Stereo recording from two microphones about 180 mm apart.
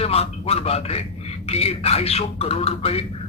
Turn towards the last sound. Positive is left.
turn(degrees=35)  # may be behind; listen again after turning